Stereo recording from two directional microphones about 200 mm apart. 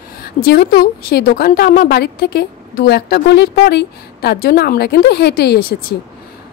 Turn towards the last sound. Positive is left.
turn(degrees=50)  # may be behind; listen again after turning